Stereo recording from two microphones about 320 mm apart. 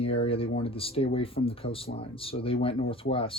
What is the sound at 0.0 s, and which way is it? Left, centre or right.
Speech, centre.